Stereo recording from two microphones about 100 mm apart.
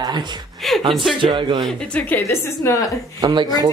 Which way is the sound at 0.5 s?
Centre (ahead or behind).